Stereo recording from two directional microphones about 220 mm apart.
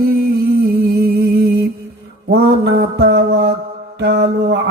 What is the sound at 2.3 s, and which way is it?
Mantra, 50° right (ahead or behind).